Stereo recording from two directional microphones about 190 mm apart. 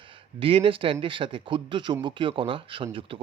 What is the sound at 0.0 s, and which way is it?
Speech, 25° right (ahead or behind).